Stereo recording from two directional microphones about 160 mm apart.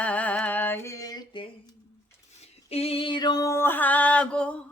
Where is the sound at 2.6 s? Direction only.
40° left (ahead or behind); by 4.6 s 5° left (ahead or behind).